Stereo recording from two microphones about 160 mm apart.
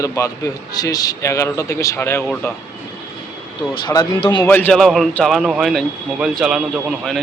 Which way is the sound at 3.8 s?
25° left (ahead or behind).